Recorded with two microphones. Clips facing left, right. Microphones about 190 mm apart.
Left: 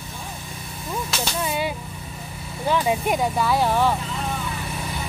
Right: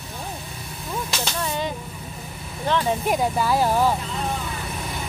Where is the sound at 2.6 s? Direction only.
10° left (ahead or behind).